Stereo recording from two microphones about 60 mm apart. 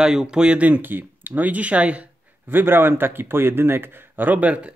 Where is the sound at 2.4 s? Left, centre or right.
Right.